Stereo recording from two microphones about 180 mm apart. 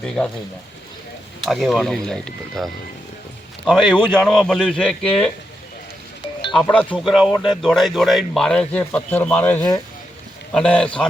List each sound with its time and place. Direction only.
0.2 s a man's voice: 5° left (ahead or behind)
1.5 s a man's voice: centre (ahead or behind)
3.7 s a man's voice: centre (ahead or behind)
6.5 s a man's voice: 5° left (ahead or behind)